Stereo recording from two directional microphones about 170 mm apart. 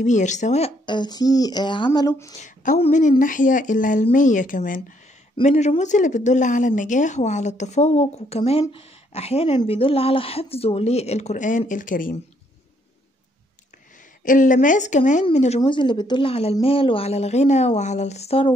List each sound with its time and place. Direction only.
0.0 s speech: 45° left (ahead or behind); by 2.3 s 20° left (ahead or behind)
2.3 s speech: 45° left (ahead or behind)
5.4 s speech: 40° left (ahead or behind)
14.2 s speech: 50° left (ahead or behind)
15.6 s speech: 30° left (ahead or behind)